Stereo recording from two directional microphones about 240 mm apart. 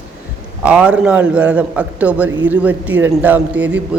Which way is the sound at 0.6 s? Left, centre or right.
Centre.